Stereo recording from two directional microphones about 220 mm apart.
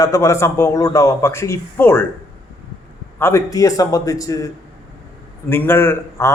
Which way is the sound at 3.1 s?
10° left (ahead or behind).